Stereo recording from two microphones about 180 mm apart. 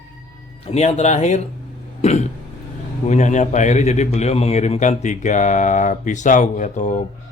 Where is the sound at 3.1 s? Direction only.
40° left (ahead or behind).